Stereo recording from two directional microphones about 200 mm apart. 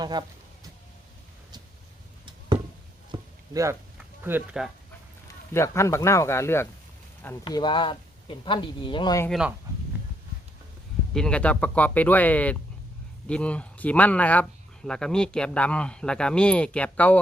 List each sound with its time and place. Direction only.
0.0 s speech: 20° right (ahead or behind)
3.1 s a sound: 15° right (ahead or behind)
4.2 s speech: 10° right (ahead or behind)
5.5 s speech: 15° left (ahead or behind)
9.2 s speech: centre (ahead or behind)
11.1 s speech: 5° left (ahead or behind)